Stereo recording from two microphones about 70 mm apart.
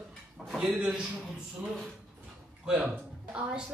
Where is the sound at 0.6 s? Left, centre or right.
Centre.